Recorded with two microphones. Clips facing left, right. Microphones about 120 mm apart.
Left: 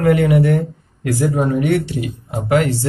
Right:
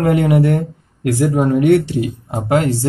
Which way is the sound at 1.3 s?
55° right (ahead or behind).